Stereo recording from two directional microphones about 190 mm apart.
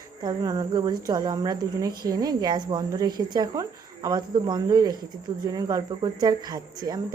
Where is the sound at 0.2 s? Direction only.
20° right (ahead or behind).